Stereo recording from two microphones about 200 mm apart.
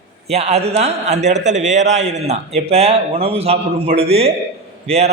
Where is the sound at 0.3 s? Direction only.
30° right (ahead or behind).